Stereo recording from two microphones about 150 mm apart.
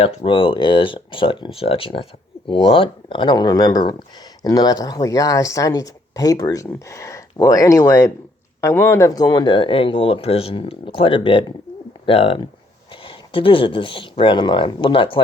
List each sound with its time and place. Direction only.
0.0 s speech: 40° left (ahead or behind)